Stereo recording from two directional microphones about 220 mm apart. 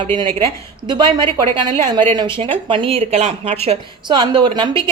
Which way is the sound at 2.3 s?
25° right (ahead or behind).